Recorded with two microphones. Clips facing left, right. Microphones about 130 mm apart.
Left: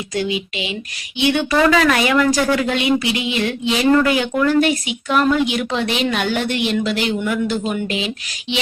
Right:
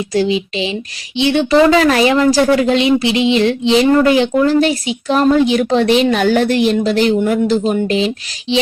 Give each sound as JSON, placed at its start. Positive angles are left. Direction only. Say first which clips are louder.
{"t": 0.1, "sound": "speech", "louder": "right 6 dB", "side_deg": -30}